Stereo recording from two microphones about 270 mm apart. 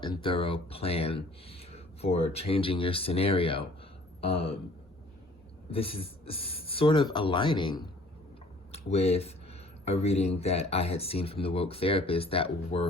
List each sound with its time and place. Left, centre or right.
0.0 s speech: centre
5.7 s speech: left